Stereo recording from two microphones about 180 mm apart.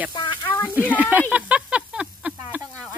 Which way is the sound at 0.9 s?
10° right (ahead or behind).